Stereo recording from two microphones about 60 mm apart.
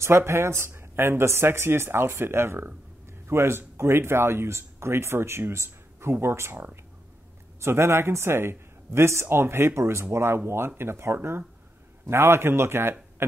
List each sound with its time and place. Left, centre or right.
0.0 s speech: right
6.5 s speech: right
7.6 s speech: right